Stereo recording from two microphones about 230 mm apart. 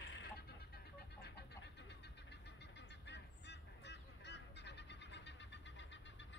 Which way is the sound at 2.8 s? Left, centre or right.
Left.